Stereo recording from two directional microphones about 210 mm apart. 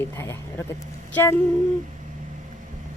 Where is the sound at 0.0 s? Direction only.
10° left (ahead or behind).